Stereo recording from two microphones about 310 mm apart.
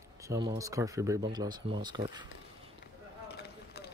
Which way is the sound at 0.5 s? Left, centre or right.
Centre.